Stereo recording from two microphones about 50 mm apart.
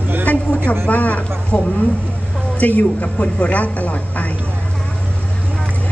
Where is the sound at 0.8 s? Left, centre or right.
Left.